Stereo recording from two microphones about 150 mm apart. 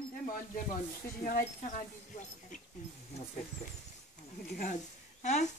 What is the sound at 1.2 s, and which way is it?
Speech, 65° left (ahead or behind).